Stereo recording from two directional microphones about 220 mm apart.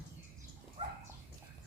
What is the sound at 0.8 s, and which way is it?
Dog, 25° right (ahead or behind).